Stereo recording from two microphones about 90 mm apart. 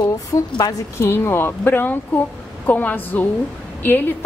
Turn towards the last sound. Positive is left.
turn(degrees=20)  # may be behind; listen again after turning